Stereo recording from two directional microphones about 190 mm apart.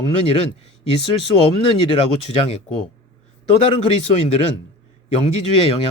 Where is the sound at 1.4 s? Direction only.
30° left (ahead or behind).